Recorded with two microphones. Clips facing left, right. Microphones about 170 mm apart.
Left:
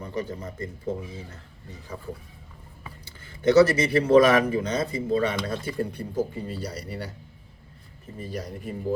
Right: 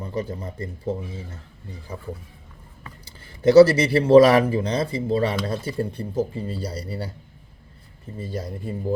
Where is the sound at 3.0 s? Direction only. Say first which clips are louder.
Right 3 dB; 35° right (ahead or behind).